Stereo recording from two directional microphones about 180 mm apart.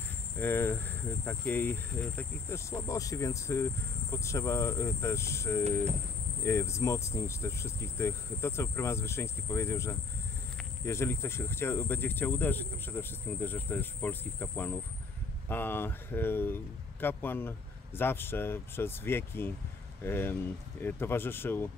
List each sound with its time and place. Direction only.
0.4 s speech: 10° left (ahead or behind)